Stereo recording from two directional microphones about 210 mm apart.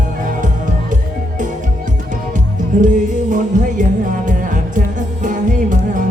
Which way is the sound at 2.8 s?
35° right (ahead or behind).